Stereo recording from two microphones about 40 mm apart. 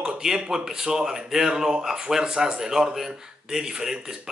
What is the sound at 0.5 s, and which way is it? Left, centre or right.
A man's voice, centre.